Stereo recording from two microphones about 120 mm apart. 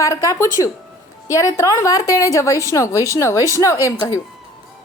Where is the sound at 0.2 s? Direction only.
25° left (ahead or behind).